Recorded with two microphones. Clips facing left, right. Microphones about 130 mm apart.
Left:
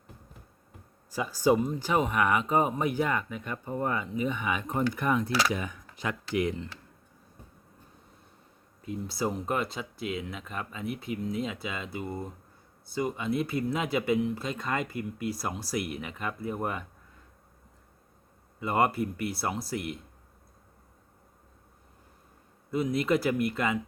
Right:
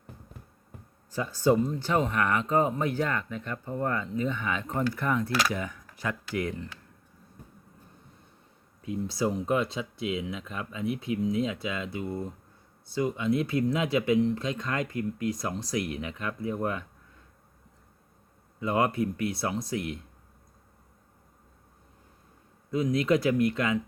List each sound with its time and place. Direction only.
1.1 s speech: 10° left (ahead or behind)
8.8 s speech: centre (ahead or behind)
18.6 s speech: 5° left (ahead or behind)
22.7 s speech: 5° left (ahead or behind)